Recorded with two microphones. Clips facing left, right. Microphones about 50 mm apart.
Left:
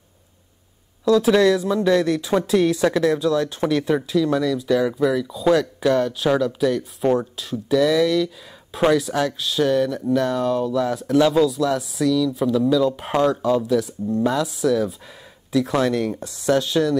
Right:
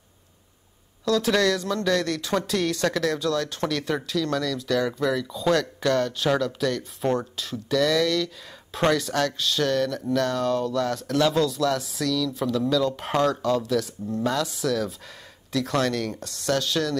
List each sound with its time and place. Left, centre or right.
1.0 s speech: centre